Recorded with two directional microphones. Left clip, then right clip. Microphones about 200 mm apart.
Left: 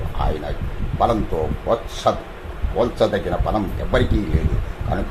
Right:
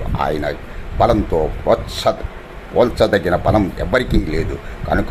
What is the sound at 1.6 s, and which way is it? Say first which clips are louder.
Speech: right 2 dB; 30° right (ahead or behind).